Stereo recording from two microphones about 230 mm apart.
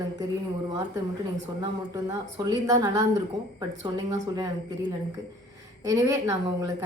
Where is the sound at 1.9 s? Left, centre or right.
Centre.